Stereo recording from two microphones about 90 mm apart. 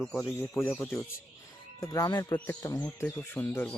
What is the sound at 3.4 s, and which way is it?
Speech, 15° left (ahead or behind).